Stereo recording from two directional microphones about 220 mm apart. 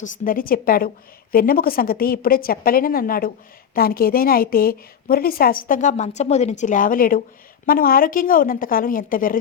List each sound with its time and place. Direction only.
0.0 s a woman's voice: 40° left (ahead or behind)